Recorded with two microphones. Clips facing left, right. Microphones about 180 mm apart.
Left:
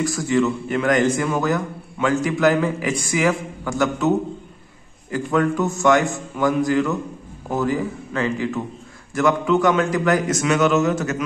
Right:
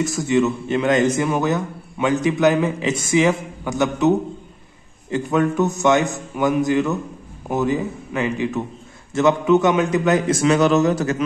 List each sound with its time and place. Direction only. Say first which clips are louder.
0.2 s a man's voice: right 2 dB; 20° right (ahead or behind)
5.1 s a man's voice: right 1 dB; 20° right (ahead or behind)